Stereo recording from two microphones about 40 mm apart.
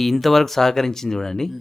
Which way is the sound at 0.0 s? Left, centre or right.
Centre.